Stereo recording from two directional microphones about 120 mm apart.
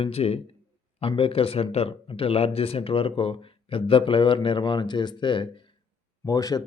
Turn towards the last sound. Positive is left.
turn(degrees=30)  # may be behind; listen again after turning